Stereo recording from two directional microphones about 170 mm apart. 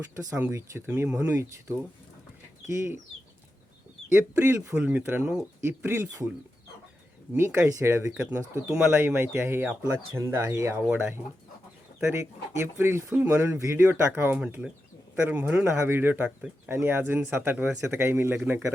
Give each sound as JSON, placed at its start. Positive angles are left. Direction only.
{"t": 0.3, "sound": "speech", "side_deg": -15}
{"t": 4.1, "sound": "speech", "side_deg": -15}
{"t": 7.3, "sound": "speech", "side_deg": -15}
{"t": 12.5, "sound": "speech", "side_deg": -15}